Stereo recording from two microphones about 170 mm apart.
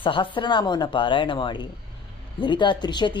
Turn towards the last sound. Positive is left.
turn(degrees=25)  # may be behind; listen again after turning